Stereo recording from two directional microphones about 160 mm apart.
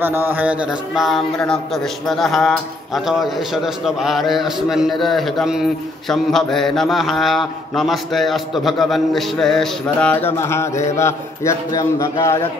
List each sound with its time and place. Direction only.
0.0 s a man's voice: 15° right (ahead or behind); by 12.4 s 20° left (ahead or behind)